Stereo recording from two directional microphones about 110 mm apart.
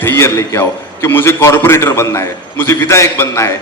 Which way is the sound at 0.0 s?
25° left (ahead or behind).